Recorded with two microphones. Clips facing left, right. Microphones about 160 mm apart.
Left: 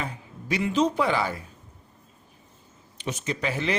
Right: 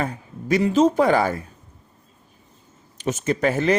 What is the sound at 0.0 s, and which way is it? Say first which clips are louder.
Speech: right 7 dB; 45° right (ahead or behind).